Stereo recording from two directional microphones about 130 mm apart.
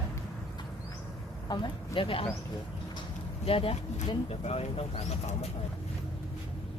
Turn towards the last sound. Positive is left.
turn(degrees=50)  # may be behind; listen again after turning